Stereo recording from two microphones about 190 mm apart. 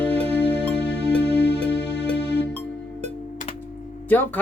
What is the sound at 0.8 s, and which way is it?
Music, 60° left (ahead or behind).